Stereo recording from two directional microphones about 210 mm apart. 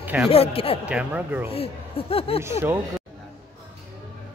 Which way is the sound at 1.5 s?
25° left (ahead or behind).